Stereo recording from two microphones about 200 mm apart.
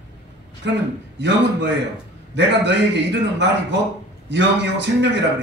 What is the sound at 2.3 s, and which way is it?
A man's voice, 60° right (ahead or behind).